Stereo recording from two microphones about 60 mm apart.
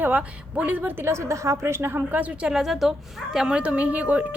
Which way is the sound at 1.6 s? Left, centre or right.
Right.